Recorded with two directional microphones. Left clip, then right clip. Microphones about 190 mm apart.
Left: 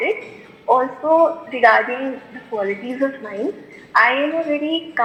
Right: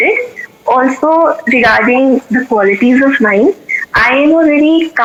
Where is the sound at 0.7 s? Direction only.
90° right.